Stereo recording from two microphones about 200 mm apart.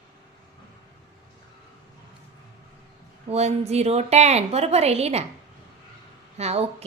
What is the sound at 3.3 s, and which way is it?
A woman's voice, 30° right (ahead or behind).